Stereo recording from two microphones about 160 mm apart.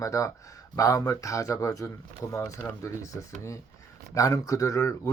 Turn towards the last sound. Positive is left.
turn(degrees=20)  # may be behind; listen again after turning